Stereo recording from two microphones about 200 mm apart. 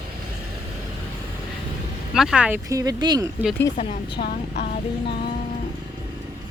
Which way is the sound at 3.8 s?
25° left (ahead or behind).